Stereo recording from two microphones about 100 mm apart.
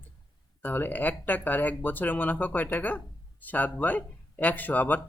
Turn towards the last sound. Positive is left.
turn(degrees=15)  # may be behind; listen again after turning